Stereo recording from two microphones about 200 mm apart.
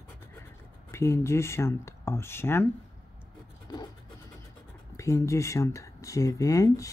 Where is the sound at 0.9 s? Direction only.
15° left (ahead or behind).